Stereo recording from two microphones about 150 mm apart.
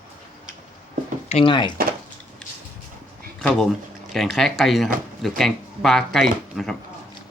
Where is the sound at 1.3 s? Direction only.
45° left (ahead or behind).